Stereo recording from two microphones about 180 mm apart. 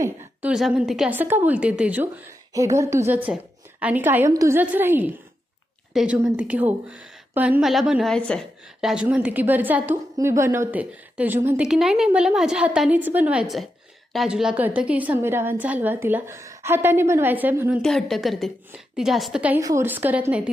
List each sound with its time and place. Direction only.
0.5 s a woman's voice: 5° right (ahead or behind)
2.5 s a woman's voice: 15° right (ahead or behind)
17.8 s a woman's voice: centre (ahead or behind)